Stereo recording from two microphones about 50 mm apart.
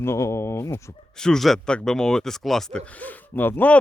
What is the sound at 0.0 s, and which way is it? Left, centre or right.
Speech, left.